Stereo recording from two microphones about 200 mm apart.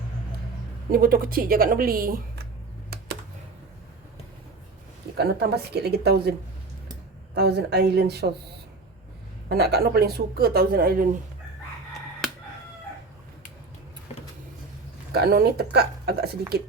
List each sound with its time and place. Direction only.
0.9 s speech: 45° right (ahead or behind)
5.1 s speech: 55° right (ahead or behind)
7.3 s speech: 55° right (ahead or behind)
9.5 s speech: 55° right (ahead or behind)
15.1 s speech: 50° right (ahead or behind)